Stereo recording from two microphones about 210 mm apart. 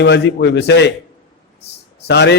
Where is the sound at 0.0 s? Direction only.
55° left (ahead or behind).